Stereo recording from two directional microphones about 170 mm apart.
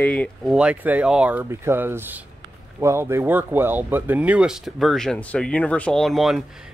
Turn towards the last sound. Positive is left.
turn(degrees=0)  # may be behind; listen again after turning